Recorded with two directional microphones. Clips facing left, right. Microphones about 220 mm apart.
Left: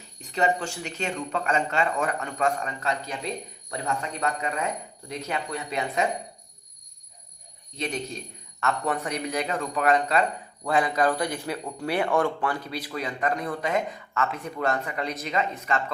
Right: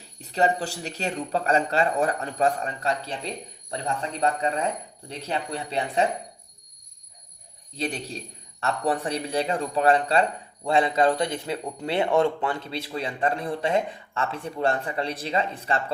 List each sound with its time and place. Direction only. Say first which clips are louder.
0.2 s speech: right 2 dB; 35° right (ahead or behind)
7.8 s a man's voice: right 1 dB; 35° right (ahead or behind)